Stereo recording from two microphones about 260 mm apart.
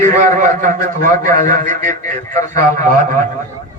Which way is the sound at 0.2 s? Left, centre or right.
Right.